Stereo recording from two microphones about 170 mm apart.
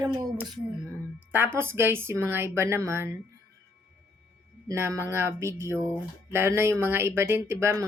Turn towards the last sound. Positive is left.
turn(degrees=-15)  # may be behind; listen again after turning